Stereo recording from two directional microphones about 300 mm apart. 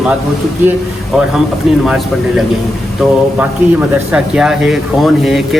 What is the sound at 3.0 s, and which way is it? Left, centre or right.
Speech, centre.